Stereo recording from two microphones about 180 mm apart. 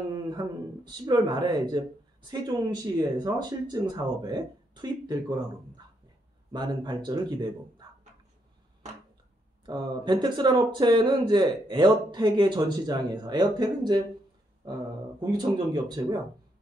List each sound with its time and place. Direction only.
0.4 s speech: 20° right (ahead or behind)
6.5 s speech: 25° right (ahead or behind)
9.7 s speech: 25° right (ahead or behind)
15.1 s speech: 20° right (ahead or behind)